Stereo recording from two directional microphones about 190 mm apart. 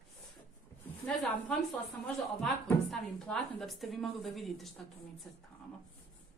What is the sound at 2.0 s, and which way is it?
A woman's voice, centre (ahead or behind).